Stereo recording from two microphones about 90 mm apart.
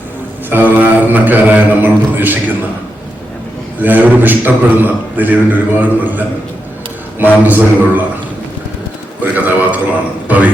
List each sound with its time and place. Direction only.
0.5 s a man's voice: 20° right (ahead or behind)
3.8 s a man's voice: 20° right (ahead or behind)
9.2 s a man's voice: 20° right (ahead or behind)